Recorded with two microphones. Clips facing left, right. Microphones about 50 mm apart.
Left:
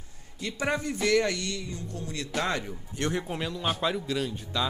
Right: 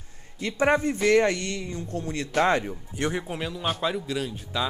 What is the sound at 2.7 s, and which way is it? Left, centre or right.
A man's voice, centre.